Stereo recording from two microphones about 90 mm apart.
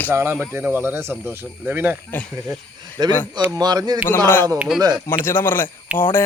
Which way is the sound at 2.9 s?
50° right (ahead or behind).